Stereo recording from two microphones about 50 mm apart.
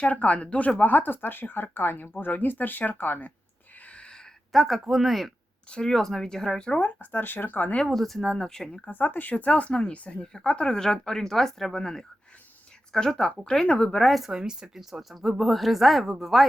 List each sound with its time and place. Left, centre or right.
0.0 s speech: left
0.8 s speech: left
3.8 s a sound: left
4.5 s speech: centre
5.7 s speech: centre
6.8 s speech: left
7.9 s speech: centre
8.2 s speech: centre
8.9 s speech: left
9.3 s speech: left
13.9 s speech: centre
14.3 s speech: centre